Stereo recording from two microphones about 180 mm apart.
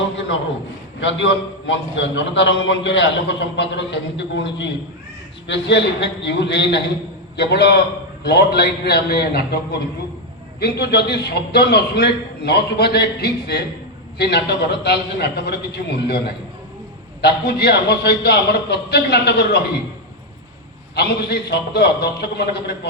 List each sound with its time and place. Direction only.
0.9 s a man's voice: 90° left; by 9.6 s 60° left (ahead or behind)
10.6 s a man's voice: 65° left (ahead or behind)
20.9 s a man's voice: 65° left (ahead or behind)